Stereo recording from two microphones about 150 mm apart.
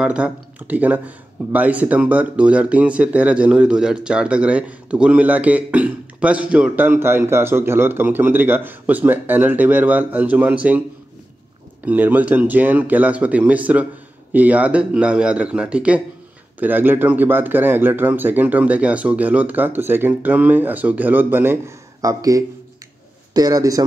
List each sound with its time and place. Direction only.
0.0 s speech: 5° right (ahead or behind)
11.8 s a man's voice: 10° right (ahead or behind)